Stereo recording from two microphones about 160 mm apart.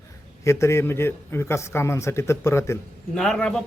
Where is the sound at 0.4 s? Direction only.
15° left (ahead or behind).